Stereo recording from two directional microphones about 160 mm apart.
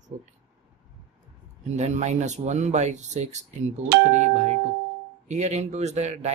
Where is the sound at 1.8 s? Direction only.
45° right (ahead or behind).